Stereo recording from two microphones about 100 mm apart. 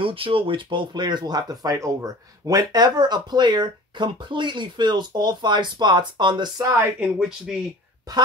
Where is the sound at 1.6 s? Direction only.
35° right (ahead or behind).